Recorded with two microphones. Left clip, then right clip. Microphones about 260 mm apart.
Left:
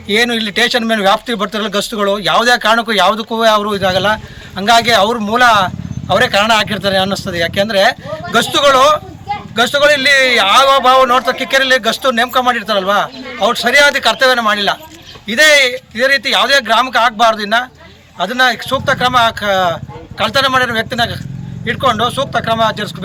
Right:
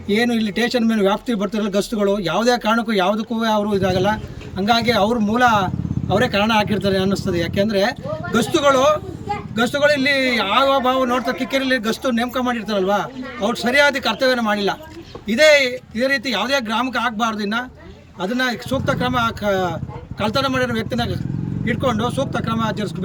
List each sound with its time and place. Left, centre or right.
0.1 s speech: centre